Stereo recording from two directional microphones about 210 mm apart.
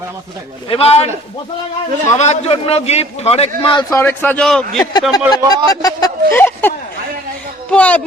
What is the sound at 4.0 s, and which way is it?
Speech, 10° left (ahead or behind).